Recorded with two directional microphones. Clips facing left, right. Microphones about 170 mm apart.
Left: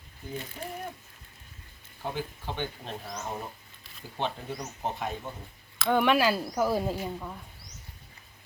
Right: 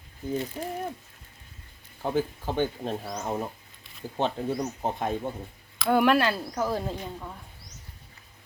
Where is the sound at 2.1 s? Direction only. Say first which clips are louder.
Right 10 dB; 45° right (ahead or behind).